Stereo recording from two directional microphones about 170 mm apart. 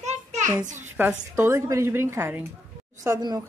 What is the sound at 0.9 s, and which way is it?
A woman's voice, 10° right (ahead or behind).